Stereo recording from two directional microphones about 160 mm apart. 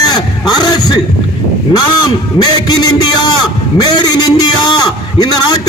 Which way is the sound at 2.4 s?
25° left (ahead or behind).